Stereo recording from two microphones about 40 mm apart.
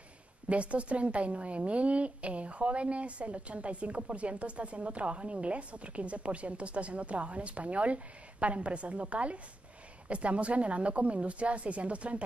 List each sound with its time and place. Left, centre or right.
0.5 s a woman's voice: right